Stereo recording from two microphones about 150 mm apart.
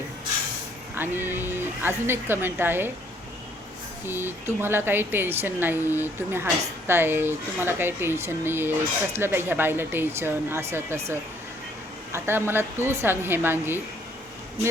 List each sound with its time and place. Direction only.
0.9 s speech: 15° right (ahead or behind)
4.0 s speech: 15° right (ahead or behind)